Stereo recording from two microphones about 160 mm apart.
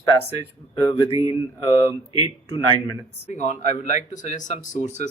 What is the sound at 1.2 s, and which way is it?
Mantra, 30° left (ahead or behind).